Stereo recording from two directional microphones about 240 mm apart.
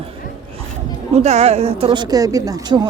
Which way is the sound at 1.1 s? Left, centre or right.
Right.